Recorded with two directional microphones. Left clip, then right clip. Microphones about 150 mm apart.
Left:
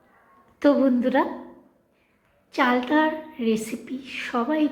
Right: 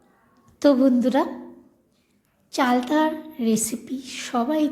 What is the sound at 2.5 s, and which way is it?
A woman's voice, 35° right (ahead or behind).